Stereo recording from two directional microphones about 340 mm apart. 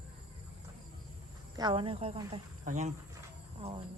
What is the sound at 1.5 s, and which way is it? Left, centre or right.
A woman's voice, centre.